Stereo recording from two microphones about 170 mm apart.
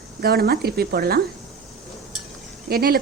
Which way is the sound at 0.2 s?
65° right (ahead or behind).